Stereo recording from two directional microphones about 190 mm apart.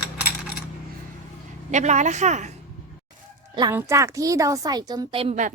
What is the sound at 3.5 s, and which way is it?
Music, 20° right (ahead or behind).